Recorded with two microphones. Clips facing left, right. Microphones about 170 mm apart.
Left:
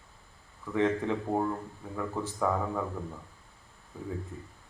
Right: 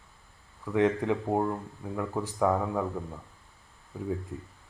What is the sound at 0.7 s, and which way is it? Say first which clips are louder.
Speech: right 2 dB; 15° right (ahead or behind).